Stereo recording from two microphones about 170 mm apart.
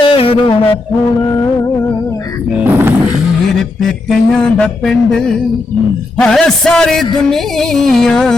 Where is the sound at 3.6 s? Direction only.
Centre (ahead or behind).